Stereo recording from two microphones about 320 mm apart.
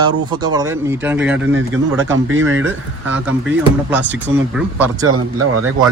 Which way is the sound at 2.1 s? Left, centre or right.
Right.